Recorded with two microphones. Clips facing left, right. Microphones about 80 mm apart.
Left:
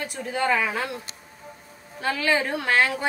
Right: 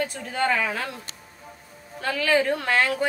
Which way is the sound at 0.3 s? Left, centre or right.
Centre.